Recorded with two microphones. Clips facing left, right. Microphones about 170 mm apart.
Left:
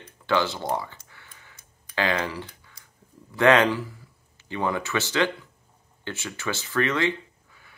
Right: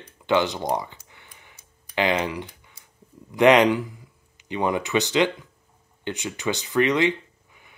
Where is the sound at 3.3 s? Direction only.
15° right (ahead or behind).